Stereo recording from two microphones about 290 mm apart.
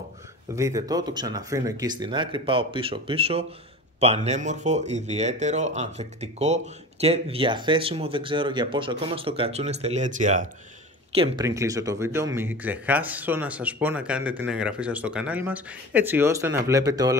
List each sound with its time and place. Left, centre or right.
0.6 s speech: centre